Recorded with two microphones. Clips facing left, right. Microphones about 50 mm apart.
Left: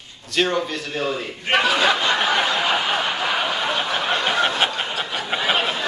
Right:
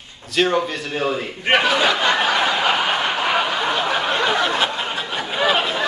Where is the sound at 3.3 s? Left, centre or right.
Right.